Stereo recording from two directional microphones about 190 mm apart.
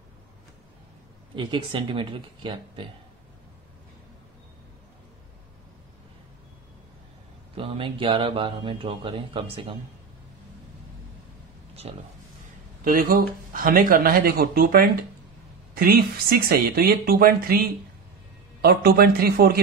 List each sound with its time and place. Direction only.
1.3 s speech: 25° right (ahead or behind)
7.5 s speech: 30° right (ahead or behind)
11.8 s speech: 35° right (ahead or behind)
12.8 s speech: 50° right (ahead or behind)